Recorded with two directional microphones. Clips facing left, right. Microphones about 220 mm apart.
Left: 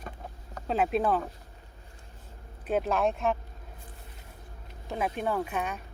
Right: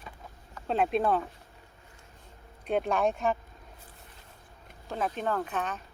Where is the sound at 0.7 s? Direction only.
5° left (ahead or behind).